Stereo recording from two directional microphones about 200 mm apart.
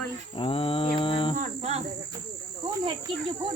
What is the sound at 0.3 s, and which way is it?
Mantra, 25° left (ahead or behind).